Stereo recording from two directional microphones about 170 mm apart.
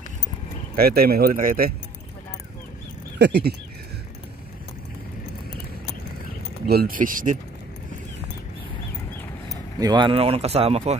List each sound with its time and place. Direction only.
0.7 s speech: 60° right (ahead or behind)
3.2 s speech: 75° right (ahead or behind)
6.7 s speech: 60° right (ahead or behind)
9.8 s speech: 25° right (ahead or behind)